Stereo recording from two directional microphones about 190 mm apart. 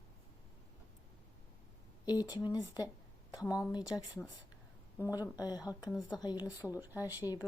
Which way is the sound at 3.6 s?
20° left (ahead or behind).